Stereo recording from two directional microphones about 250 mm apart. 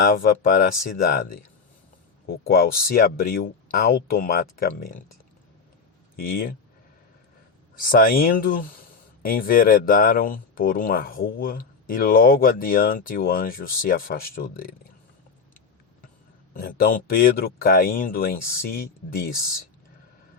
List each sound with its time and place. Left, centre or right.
0.0 s speech: left
6.1 s speech: left
7.8 s speech: left
16.6 s speech: left